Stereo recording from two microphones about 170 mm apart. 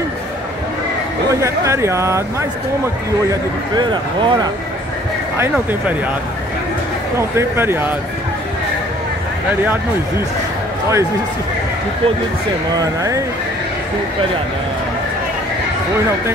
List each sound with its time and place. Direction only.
1.3 s speech: 15° right (ahead or behind)
3.7 s speech: 30° right (ahead or behind)
7.2 s speech: 15° right (ahead or behind)
12.7 s speech: 20° right (ahead or behind)